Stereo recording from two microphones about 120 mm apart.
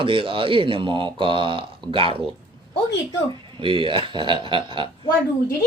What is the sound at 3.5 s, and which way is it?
Speech, 45° right (ahead or behind).